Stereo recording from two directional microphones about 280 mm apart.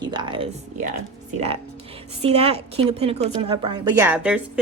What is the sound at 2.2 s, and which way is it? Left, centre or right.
A woman's voice, right.